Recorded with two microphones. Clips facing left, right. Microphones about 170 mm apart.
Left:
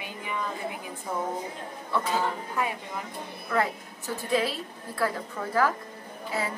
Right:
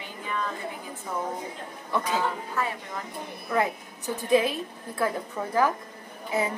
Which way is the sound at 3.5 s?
20° right (ahead or behind).